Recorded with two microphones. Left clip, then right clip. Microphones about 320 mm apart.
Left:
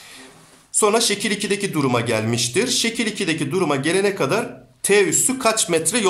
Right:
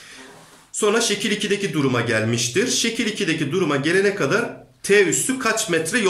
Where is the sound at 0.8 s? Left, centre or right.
Centre.